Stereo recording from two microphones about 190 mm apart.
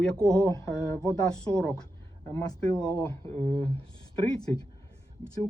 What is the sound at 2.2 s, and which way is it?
Speech, 20° left (ahead or behind).